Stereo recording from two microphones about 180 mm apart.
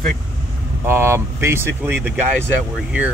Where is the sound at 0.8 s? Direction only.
15° right (ahead or behind).